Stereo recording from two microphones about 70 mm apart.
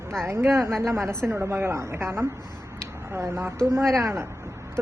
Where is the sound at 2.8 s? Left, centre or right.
Right.